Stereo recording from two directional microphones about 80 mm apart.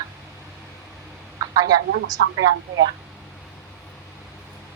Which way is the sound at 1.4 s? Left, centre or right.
Right.